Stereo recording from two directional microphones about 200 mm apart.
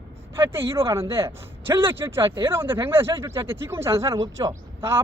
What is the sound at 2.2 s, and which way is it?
Speech, 25° right (ahead or behind).